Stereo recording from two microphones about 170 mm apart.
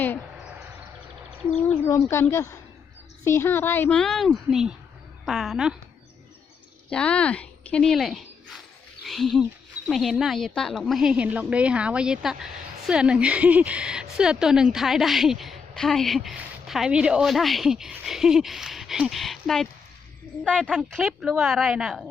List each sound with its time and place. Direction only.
1.6 s a woman's voice: 15° left (ahead or behind)
6.9 s a woman's voice: 5° left (ahead or behind)